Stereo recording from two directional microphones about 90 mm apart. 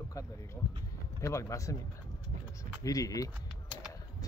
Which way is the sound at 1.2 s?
35° left (ahead or behind).